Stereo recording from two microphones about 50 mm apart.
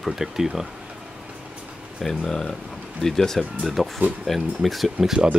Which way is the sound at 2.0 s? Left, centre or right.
Centre.